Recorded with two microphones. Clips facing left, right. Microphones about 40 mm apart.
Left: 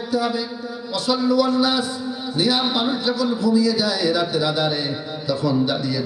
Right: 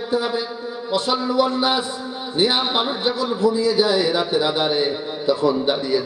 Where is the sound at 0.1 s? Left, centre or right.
Right.